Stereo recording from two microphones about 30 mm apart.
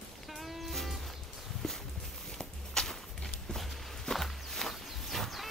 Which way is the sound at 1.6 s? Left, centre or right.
Centre.